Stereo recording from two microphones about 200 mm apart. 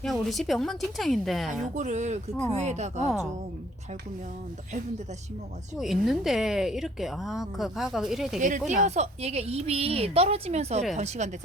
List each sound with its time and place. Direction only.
0.0 s a woman's voice: centre (ahead or behind)
1.7 s a woman's voice: 35° right (ahead or behind)
5.7 s a woman's voice: centre (ahead or behind)
8.4 s a woman's voice: 40° right (ahead or behind)